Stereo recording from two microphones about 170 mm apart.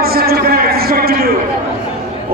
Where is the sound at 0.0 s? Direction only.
65° right (ahead or behind).